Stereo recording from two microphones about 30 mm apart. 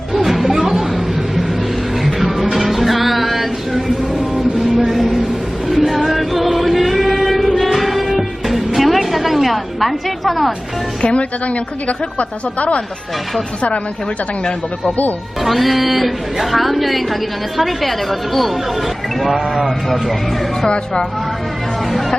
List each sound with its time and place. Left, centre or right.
0.1 s a sound: centre
2.0 s music: centre
4.4 s a sound: centre
5.6 s choir: centre
7.5 s music: centre
11.0 s speech: left
12.5 s speech: left
15.4 s a woman's voice: centre